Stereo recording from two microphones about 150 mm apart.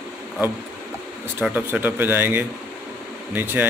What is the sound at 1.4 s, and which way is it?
A man's voice, 10° right (ahead or behind).